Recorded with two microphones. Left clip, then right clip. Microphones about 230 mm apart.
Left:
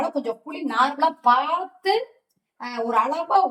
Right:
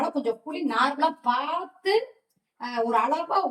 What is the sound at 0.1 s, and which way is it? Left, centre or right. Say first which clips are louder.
Speech: left 1 dB; left.